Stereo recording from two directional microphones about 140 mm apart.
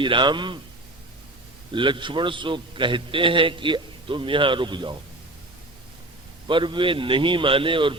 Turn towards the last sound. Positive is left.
turn(degrees=-35)  # may be behind; listen again after turning